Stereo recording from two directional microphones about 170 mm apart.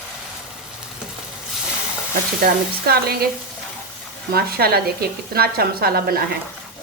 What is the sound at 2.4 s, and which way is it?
Speech, 65° right (ahead or behind).